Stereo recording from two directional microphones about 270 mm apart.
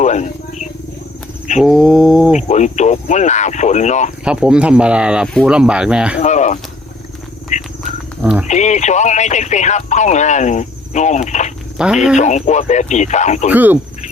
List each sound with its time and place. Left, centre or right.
0.0 s wild animals: left
1.6 s a sound: centre
2.3 s speech: left
4.2 s speech: centre
6.1 s a sound: left
8.2 s speech: centre
8.4 s speech: left
11.8 s speech: centre
12.1 s speech: left
13.5 s cricket: centre